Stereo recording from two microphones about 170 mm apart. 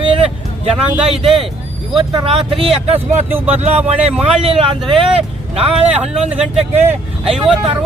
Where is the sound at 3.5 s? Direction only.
40° right (ahead or behind).